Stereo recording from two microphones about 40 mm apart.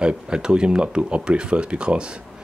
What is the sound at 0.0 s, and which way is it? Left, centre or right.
Speech, right.